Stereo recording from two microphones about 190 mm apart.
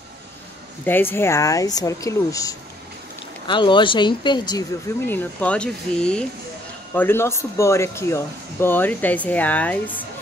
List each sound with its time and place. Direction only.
0.8 s speech: 10° left (ahead or behind)
5.0 s speech: 10° left (ahead or behind)